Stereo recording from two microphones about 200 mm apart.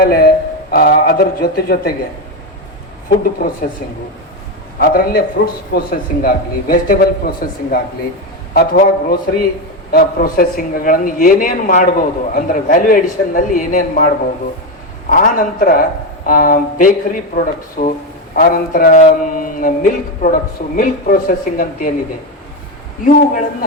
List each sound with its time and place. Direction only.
0.0 s a man's voice: 50° left (ahead or behind)
3.1 s speech: 45° left (ahead or behind)
4.8 s speech: 50° left (ahead or behind)
15.1 s speech: 40° left (ahead or behind)
23.0 s speech: 45° left (ahead or behind)